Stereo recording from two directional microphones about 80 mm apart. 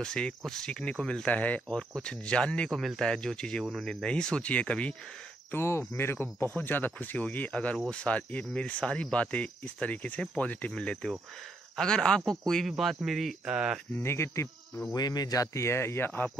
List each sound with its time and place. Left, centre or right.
0.0 s speech: centre
5.5 s speech: left; by 13.7 s centre
13.9 s speech: left
15.0 s speech: left